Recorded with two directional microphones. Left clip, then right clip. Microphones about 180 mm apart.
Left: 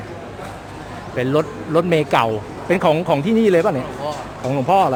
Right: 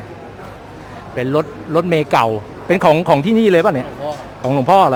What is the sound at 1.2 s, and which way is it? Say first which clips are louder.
A man's voice: right 1 dB; 15° right (ahead or behind).